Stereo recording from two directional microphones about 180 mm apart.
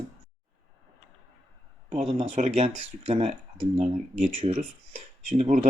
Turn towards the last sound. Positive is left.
turn(degrees=-35)  # may be behind; listen again after turning